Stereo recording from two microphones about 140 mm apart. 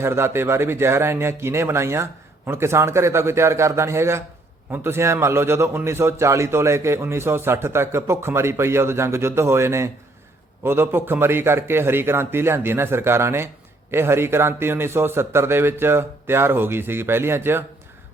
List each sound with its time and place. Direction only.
0.0 s a man's voice: 20° right (ahead or behind)